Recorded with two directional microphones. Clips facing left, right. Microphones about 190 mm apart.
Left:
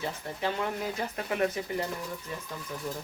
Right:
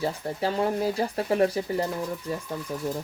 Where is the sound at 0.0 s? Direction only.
35° right (ahead or behind).